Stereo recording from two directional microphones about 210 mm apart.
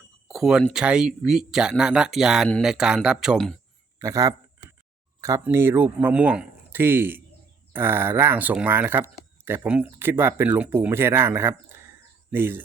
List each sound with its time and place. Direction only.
0.3 s speech: centre (ahead or behind)
4.0 s speech: 15° right (ahead or behind)